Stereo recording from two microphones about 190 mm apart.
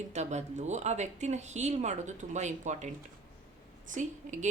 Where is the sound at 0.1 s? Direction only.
35° right (ahead or behind).